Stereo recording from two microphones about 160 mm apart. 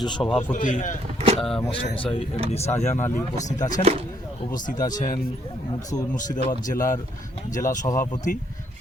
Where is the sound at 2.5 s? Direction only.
40° left (ahead or behind).